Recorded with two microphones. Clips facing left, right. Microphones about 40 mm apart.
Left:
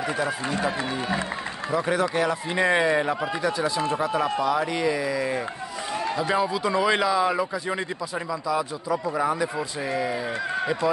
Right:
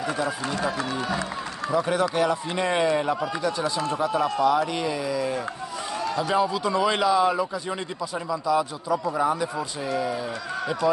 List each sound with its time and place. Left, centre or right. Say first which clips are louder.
0.2 s speech: left 1 dB; left
1.9 s speech: left 1 dB; centre
3.5 s speech: left 1 dB; centre; by 5.4 s left
6.3 s speech: right 1 dB; centre
9.8 s speech: even; left